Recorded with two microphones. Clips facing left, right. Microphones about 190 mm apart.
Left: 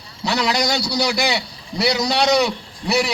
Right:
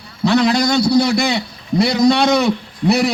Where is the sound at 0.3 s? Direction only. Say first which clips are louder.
Right 6 dB; 55° right (ahead or behind).